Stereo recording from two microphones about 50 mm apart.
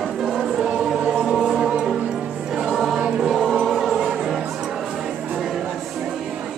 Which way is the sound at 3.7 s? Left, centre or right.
Centre.